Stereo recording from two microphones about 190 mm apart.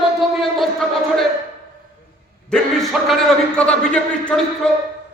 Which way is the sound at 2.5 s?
Centre (ahead or behind).